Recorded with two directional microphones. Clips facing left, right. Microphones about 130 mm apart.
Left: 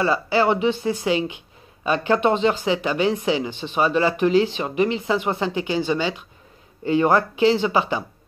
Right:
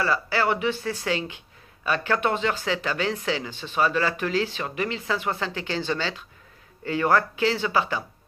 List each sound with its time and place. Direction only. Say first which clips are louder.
0.0 s speech: left 5 dB; 20° left (ahead or behind)